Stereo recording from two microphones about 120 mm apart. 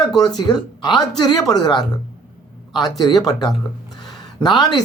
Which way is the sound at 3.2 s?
30° left (ahead or behind).